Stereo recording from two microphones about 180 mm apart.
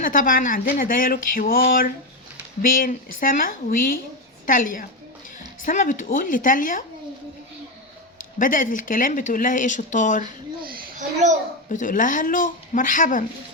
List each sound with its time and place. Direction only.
0.0 s speech: 50° left (ahead or behind)
8.4 s speech: 50° left (ahead or behind)
11.7 s speech: 45° left (ahead or behind)